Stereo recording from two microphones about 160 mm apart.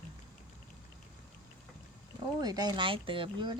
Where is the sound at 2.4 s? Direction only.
25° right (ahead or behind).